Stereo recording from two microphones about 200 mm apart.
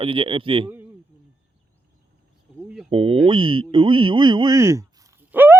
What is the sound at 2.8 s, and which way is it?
Speech, 25° right (ahead or behind).